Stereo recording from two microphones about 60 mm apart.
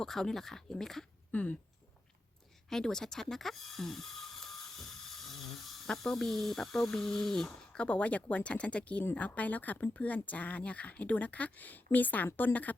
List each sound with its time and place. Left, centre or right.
0.0 s speech: centre
1.3 s speech: left
2.6 s a sound: centre
5.9 s speech: centre; by 12.5 s left